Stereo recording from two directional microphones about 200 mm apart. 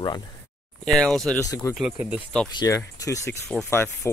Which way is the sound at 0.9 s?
Centre (ahead or behind).